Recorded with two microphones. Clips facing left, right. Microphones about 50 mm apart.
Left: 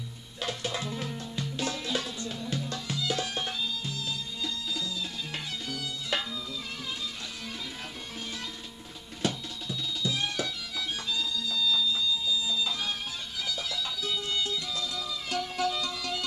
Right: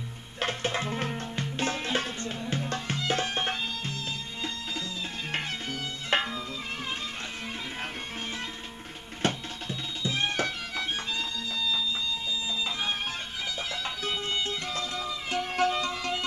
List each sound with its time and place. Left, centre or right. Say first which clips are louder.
0.4 s music: right 4 dB; right
5.3 s music: right 4 dB; right
9.2 s music: right 2 dB; right